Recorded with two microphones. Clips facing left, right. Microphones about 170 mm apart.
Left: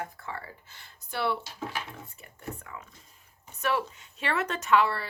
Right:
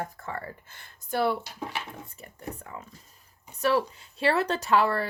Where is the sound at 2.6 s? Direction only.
35° right (ahead or behind).